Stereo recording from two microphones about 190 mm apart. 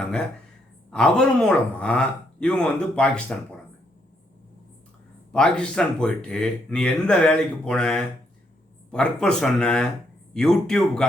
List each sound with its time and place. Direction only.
0.9 s speech: 5° left (ahead or behind)
5.3 s speech: 5° left (ahead or behind)